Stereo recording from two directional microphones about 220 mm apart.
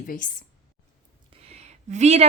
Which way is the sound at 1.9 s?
30° right (ahead or behind).